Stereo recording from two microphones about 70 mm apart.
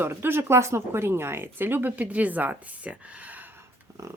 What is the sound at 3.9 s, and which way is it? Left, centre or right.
Dog, right.